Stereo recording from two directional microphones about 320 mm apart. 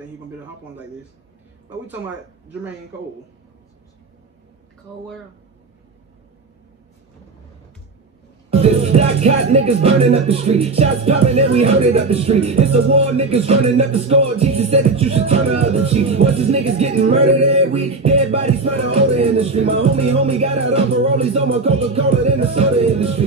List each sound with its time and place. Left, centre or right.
8.5 s music: centre